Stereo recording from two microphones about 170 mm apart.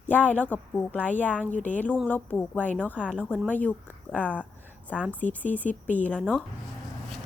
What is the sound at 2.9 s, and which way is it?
Speech, 5° right (ahead or behind).